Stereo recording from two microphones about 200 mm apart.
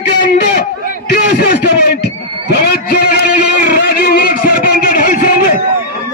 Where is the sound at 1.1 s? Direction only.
50° left (ahead or behind).